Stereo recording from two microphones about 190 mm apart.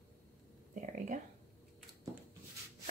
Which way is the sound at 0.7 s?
40° right (ahead or behind).